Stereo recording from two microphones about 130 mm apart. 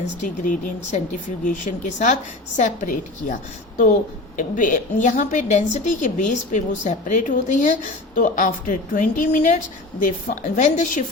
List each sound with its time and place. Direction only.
0.4 s a woman's voice: 70° left (ahead or behind)
4.4 s a woman's voice: 80° left
8.1 s a woman's voice: 90° left; by 11.0 s 70° left (ahead or behind)